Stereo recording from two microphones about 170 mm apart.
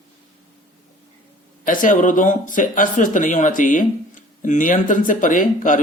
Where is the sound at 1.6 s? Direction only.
50° left (ahead or behind).